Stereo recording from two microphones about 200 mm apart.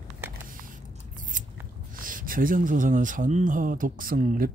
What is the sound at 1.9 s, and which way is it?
Speech, 45° right (ahead or behind).